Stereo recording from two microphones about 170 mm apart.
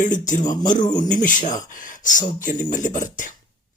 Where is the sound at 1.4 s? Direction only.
50° left (ahead or behind).